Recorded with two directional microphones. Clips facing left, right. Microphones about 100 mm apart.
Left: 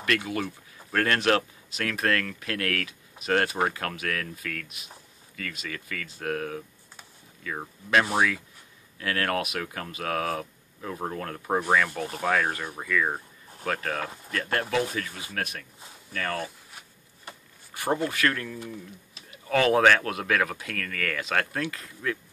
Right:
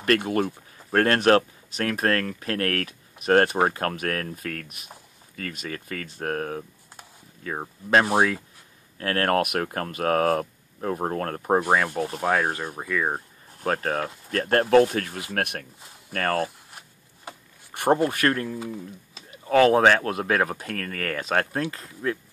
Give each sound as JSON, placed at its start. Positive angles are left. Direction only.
{"t": 0.0, "sound": "speech", "side_deg": -45}
{"t": 9.4, "sound": "speech", "side_deg": -50}
{"t": 11.5, "sound": "speech", "side_deg": -30}
{"t": 13.7, "sound": "speech", "side_deg": -35}
{"t": 16.1, "sound": "speech", "side_deg": -50}
{"t": 17.7, "sound": "speech", "side_deg": -50}
{"t": 18.3, "sound": "speech", "side_deg": -30}